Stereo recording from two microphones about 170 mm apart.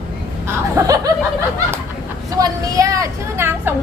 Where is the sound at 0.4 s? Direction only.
20° right (ahead or behind).